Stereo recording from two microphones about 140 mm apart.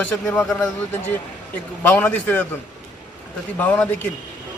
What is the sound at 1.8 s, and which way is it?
Speech, 10° left (ahead or behind).